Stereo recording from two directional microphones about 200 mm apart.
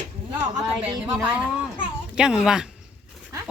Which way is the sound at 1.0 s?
10° right (ahead or behind).